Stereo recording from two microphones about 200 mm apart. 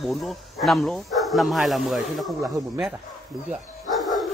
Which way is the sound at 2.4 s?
20° right (ahead or behind).